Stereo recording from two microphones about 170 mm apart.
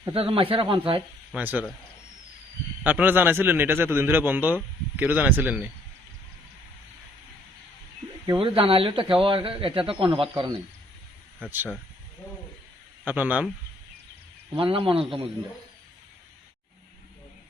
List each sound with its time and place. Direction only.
0.1 s a man's voice: 35° right (ahead or behind)
1.3 s a man's voice: 10° right (ahead or behind)
2.8 s a man's voice: 10° right (ahead or behind)
8.3 s a man's voice: 30° right (ahead or behind)
11.4 s a man's voice: 10° right (ahead or behind)
13.1 s a man's voice: 10° right (ahead or behind)
14.5 s a man's voice: 30° right (ahead or behind)